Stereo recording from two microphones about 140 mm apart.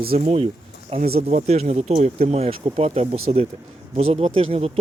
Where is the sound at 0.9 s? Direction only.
90° right.